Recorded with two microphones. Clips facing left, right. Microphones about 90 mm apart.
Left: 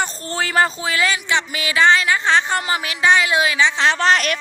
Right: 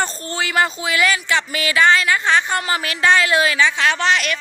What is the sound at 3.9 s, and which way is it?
Speech, 40° left (ahead or behind).